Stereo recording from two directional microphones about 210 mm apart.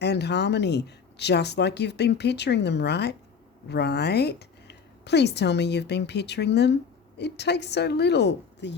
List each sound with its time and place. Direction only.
0.0 s speech: 55° left (ahead or behind)